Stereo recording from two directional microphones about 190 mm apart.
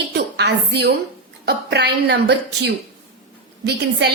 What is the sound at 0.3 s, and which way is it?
A woman's voice, 60° right (ahead or behind).